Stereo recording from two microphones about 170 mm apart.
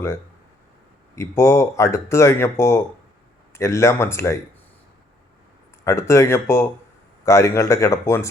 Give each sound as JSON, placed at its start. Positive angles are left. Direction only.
{"t": 1.1, "sound": "speech", "side_deg": 15}
{"t": 5.8, "sound": "speech", "side_deg": 15}